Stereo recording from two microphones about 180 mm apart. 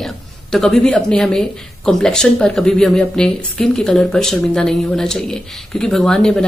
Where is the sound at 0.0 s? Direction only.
Centre (ahead or behind).